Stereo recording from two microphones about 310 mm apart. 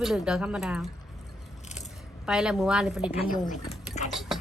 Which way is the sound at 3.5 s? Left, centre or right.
Left.